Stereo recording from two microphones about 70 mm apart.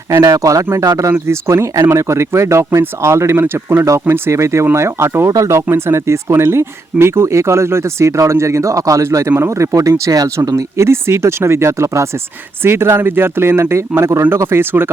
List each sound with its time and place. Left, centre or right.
0.2 s speech: right
5.3 s speech: right